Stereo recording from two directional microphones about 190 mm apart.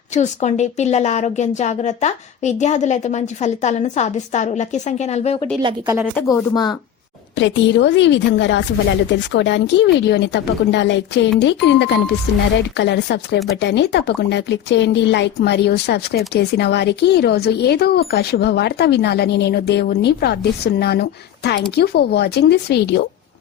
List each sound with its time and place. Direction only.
0.1 s a woman's voice: 40° left (ahead or behind)
5.8 s a woman's voice: 10° right (ahead or behind)
6.3 s speech: 20° left (ahead or behind)
7.3 s a woman's voice: 70° left (ahead or behind)